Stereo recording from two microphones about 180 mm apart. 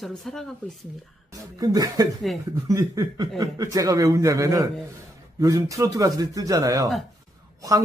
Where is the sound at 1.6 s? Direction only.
20° right (ahead or behind).